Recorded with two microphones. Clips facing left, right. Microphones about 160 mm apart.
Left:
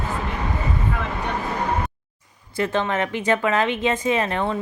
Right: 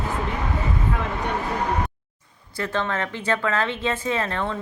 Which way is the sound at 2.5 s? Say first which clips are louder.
Left 4 dB; 15° left (ahead or behind).